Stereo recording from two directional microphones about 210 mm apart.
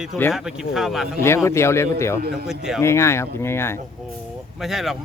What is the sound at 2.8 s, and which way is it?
Speech, 15° left (ahead or behind).